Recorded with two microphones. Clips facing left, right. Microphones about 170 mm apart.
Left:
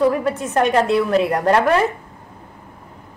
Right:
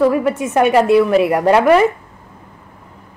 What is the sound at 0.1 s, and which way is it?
A woman's voice, 10° right (ahead or behind).